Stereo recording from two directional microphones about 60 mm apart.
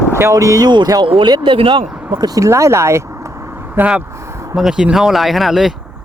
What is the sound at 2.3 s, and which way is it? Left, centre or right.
Speech, right.